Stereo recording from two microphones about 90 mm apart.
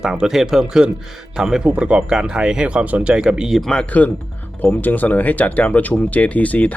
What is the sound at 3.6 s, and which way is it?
Speech, 10° left (ahead or behind).